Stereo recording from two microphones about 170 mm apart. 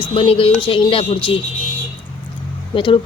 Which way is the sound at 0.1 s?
35° left (ahead or behind).